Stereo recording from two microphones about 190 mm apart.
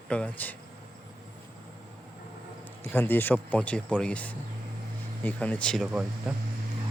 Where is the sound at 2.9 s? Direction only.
10° left (ahead or behind); by 6.3 s 5° right (ahead or behind).